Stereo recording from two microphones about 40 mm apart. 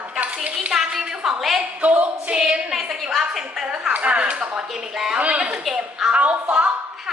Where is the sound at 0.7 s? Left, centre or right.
Centre.